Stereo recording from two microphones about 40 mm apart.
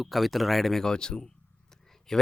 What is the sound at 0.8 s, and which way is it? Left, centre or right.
Speech, centre.